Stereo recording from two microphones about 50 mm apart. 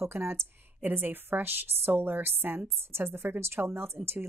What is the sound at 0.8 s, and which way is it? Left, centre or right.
A woman's voice, right.